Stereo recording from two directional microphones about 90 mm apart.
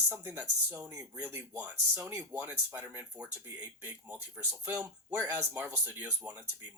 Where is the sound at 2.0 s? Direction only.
30° right (ahead or behind).